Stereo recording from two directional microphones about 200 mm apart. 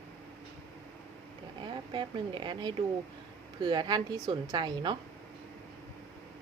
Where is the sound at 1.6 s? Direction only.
25° right (ahead or behind).